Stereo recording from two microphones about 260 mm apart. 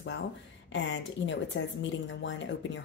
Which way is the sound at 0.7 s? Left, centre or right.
Left.